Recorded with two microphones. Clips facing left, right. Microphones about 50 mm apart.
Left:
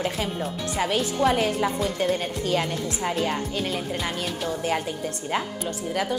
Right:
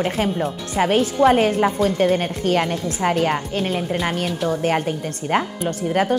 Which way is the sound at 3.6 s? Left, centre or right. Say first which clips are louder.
Right 5 dB; right.